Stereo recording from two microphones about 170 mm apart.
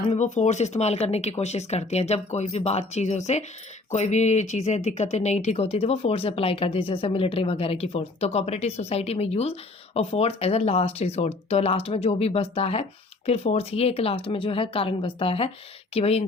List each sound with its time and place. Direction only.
0.1 s speech: 45° left (ahead or behind)